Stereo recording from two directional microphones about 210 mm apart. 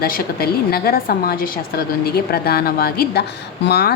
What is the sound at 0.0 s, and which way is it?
A woman's voice, 45° left (ahead or behind).